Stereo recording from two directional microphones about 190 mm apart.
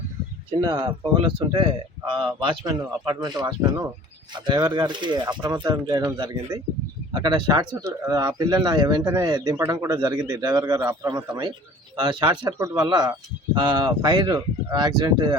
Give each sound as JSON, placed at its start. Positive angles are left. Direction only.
{"t": 1.2, "sound": "speech", "side_deg": -25}